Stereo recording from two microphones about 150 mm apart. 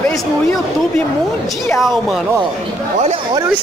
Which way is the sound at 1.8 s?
Centre (ahead or behind).